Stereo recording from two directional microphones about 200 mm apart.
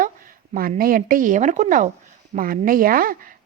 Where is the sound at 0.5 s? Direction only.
45° right (ahead or behind).